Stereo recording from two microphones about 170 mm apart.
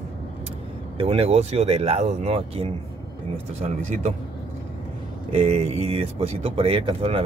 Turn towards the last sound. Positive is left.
turn(degrees=-30)  # may be behind; listen again after turning